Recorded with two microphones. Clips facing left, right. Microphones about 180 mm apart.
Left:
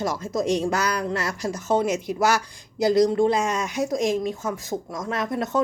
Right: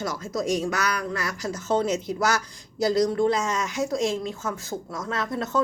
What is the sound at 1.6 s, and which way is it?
Speech, 10° left (ahead or behind).